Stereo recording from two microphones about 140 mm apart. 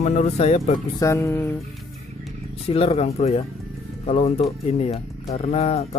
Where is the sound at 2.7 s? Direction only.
45° left (ahead or behind).